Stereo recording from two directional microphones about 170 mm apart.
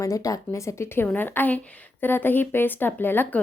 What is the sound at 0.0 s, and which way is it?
A woman's voice, 20° left (ahead or behind).